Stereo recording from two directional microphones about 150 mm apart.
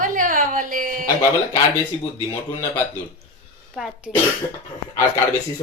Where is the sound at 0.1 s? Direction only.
65° right (ahead or behind).